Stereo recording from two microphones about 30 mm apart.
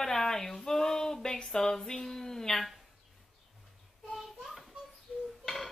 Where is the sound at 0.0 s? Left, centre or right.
Centre.